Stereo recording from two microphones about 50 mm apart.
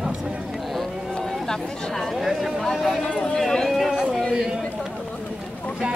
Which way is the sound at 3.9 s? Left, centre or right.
Centre.